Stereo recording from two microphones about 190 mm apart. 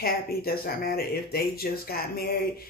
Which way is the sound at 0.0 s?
55° left (ahead or behind).